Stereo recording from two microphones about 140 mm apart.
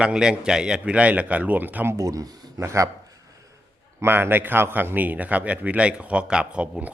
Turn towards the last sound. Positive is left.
turn(degrees=-10)  # may be behind; listen again after turning